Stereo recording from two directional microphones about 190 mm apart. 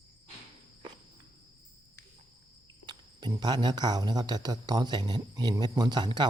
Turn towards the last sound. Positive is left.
turn(degrees=-25)  # may be behind; listen again after turning